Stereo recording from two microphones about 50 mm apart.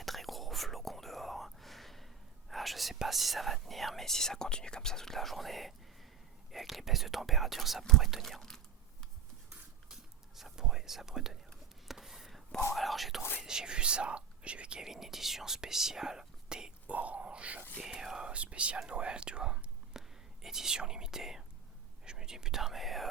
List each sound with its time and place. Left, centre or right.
0.0 s whispering: centre
2.5 s speech: centre
8.4 s a sound: centre
9.9 s whispering: centre
11.9 s a sound: centre
12.7 s whispering: centre
13.4 s speech: centre
14.8 s speech: centre
16.8 s a sound: right
17.8 s speech: centre